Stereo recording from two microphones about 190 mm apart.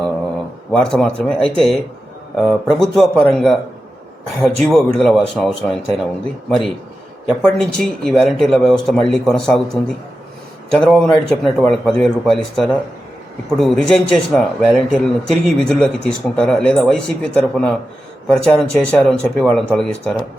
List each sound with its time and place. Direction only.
0.7 s speech: 5° left (ahead or behind)
7.3 s speech: centre (ahead or behind)